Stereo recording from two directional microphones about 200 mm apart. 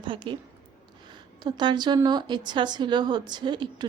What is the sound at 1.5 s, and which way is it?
A woman's voice, 20° right (ahead or behind).